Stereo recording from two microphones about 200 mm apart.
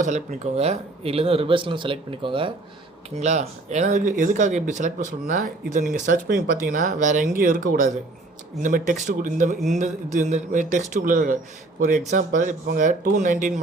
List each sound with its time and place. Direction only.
0.0 s speech: 35° right (ahead or behind)